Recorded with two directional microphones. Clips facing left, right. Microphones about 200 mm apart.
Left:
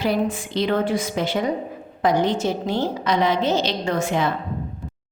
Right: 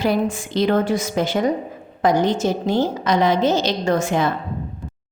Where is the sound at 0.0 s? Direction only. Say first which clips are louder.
Right 2 dB; 45° right (ahead or behind).